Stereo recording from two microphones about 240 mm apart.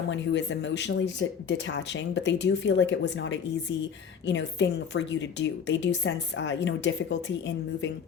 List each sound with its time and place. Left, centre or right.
0.1 s a woman's voice: left